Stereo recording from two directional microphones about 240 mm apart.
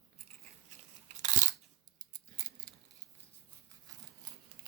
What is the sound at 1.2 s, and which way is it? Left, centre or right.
Crunch, right.